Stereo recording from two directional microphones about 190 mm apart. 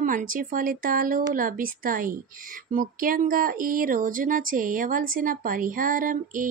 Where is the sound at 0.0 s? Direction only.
45° right (ahead or behind).